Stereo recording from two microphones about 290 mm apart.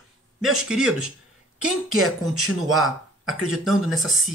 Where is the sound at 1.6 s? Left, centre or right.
Right.